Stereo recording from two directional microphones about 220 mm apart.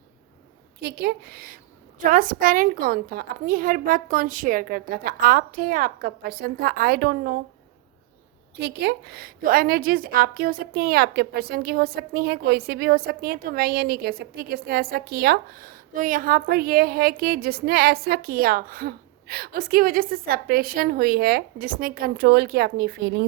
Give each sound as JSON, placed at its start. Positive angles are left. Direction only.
{"t": 0.8, "sound": "a woman's voice", "side_deg": -45}
{"t": 8.5, "sound": "a woman's voice", "side_deg": -50}